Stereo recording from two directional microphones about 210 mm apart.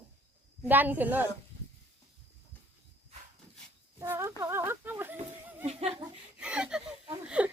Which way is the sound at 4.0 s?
10° right (ahead or behind).